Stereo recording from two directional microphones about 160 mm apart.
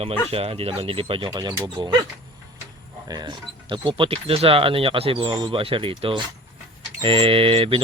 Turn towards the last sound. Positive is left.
turn(degrees=-35)  # may be behind; listen again after turning